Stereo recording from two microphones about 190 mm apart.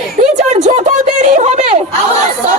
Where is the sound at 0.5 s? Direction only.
40° right (ahead or behind).